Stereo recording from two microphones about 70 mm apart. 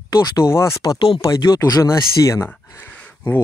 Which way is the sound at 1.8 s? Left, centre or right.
Left.